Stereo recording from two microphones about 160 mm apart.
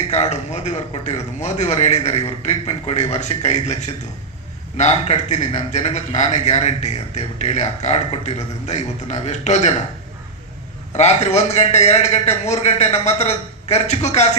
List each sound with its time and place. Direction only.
0.1 s a man's voice: 45° left (ahead or behind)
10.9 s a man's voice: 45° left (ahead or behind)